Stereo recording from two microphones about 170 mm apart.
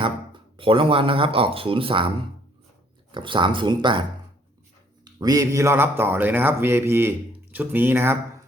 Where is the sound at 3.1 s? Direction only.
30° right (ahead or behind).